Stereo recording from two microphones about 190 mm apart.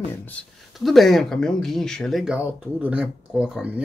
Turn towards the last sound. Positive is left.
turn(degrees=-5)  # may be behind; listen again after turning